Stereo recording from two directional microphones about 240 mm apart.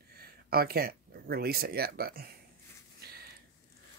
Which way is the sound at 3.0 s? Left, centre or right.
Right.